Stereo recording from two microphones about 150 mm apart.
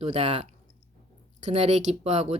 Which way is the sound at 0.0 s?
45° right (ahead or behind).